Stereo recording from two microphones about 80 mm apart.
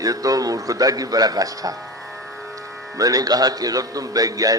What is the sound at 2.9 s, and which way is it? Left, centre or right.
A man's voice, right.